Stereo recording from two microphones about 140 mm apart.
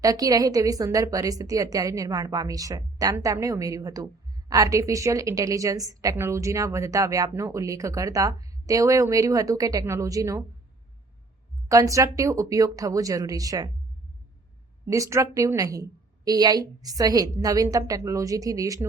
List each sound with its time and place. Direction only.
0.0 s a woman's voice: 25° right (ahead or behind)
11.7 s a woman's voice: 25° right (ahead or behind)
14.8 s a woman's voice: 20° right (ahead or behind)